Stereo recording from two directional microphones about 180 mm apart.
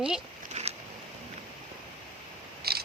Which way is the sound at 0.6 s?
40° right (ahead or behind).